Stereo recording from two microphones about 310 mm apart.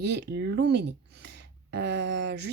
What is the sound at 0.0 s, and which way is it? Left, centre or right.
Speech, right.